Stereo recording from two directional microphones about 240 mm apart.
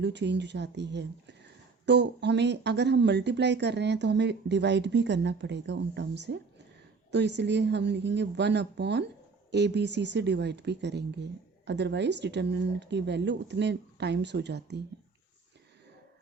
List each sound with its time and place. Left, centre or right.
0.0 s speech: right